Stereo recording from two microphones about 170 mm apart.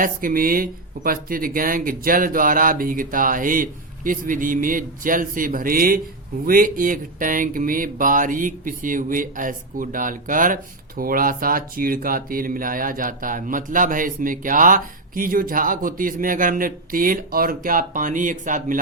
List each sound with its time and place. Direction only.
0.0 s speech: 55° right (ahead or behind)